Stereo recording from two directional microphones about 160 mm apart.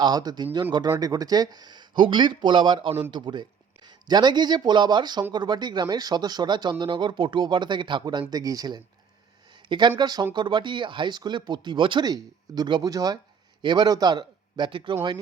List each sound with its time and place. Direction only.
0.0 s a man's voice: 25° right (ahead or behind)